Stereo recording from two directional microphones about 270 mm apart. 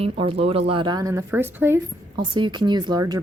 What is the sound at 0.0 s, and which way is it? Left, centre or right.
Speech, right.